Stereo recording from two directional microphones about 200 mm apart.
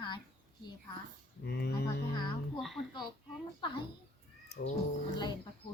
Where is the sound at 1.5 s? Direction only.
50° left (ahead or behind).